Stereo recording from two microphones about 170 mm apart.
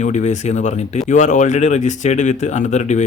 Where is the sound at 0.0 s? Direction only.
45° left (ahead or behind).